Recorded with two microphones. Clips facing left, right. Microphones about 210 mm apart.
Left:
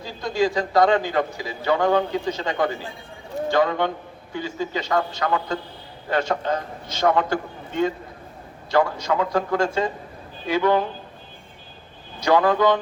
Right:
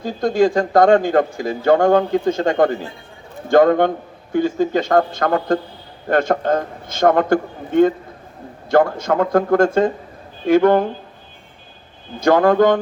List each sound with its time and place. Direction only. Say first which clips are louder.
0.0 s a man's voice: right 7 dB; 50° right (ahead or behind)
12.2 s a man's voice: right 5 dB; 50° right (ahead or behind)